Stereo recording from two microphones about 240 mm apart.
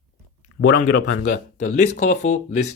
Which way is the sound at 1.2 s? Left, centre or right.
Left.